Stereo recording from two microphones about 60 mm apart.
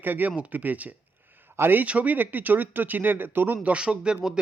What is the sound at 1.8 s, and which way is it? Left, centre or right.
Speech, right.